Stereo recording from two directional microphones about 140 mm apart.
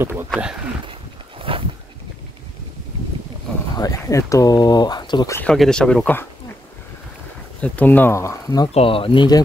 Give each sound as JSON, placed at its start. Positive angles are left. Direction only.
{"t": 0.0, "sound": "a sound", "side_deg": -15}
{"t": 1.5, "sound": "a sound", "side_deg": -40}
{"t": 3.7, "sound": "speech", "side_deg": 25}
{"t": 5.5, "sound": "speech", "side_deg": 5}
{"t": 7.6, "sound": "speech", "side_deg": 10}
{"t": 8.7, "sound": "speech", "side_deg": 40}